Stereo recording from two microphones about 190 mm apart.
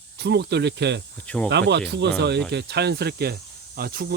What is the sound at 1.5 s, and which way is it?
Speech, 65° right (ahead or behind).